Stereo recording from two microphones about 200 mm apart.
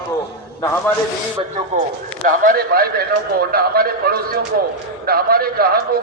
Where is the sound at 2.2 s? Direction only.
45° right (ahead or behind).